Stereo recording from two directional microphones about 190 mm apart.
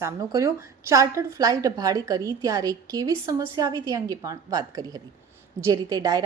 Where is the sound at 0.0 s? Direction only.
15° right (ahead or behind).